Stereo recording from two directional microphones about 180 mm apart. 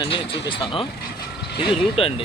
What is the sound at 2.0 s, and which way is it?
Speech, 30° left (ahead or behind).